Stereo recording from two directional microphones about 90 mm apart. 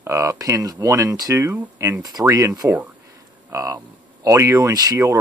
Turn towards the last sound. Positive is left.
turn(degrees=-35)  # may be behind; listen again after turning